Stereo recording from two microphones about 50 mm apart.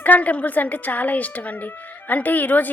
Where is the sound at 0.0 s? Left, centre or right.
Left.